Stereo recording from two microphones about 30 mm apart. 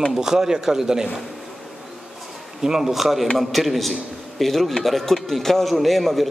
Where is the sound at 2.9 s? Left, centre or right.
Centre.